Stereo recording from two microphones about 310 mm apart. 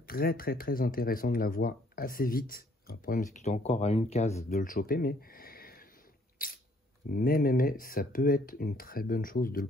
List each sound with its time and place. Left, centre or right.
0.0 s speech: left
6.4 s a sound: left
7.1 s speech: left